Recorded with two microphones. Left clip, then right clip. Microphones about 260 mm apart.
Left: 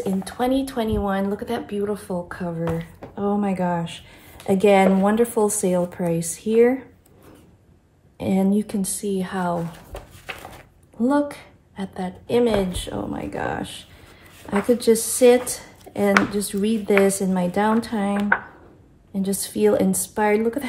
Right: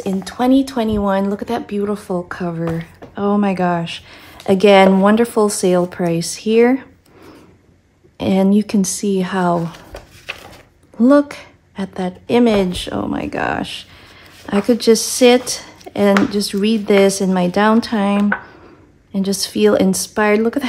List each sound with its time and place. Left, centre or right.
0.0 s speech: right
8.2 s speech: right
11.0 s speech: right
15.5 s a sound: right
16.1 s speech: centre
16.3 s speech: right
19.1 s speech: right